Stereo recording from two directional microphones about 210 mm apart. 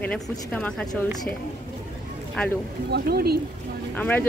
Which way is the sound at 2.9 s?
50° right (ahead or behind).